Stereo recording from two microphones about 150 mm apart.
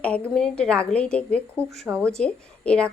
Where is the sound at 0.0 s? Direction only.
5° left (ahead or behind).